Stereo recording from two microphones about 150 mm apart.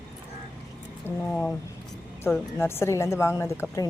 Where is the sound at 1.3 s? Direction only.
5° left (ahead or behind).